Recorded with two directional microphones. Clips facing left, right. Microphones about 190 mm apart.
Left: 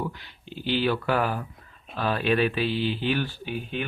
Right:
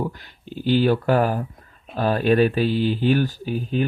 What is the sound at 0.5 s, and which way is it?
Speech, 45° right (ahead or behind).